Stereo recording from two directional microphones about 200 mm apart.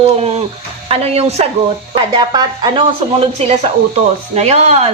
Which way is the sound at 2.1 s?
20° right (ahead or behind).